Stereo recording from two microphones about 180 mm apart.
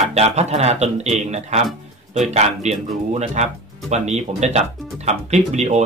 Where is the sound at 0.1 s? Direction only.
35° right (ahead or behind).